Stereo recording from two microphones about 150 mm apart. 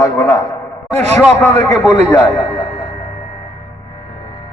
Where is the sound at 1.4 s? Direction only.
15° left (ahead or behind).